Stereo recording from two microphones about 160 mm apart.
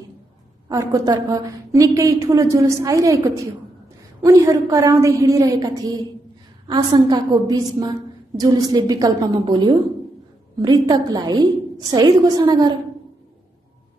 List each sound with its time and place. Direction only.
0.7 s a woman's voice: 25° right (ahead or behind)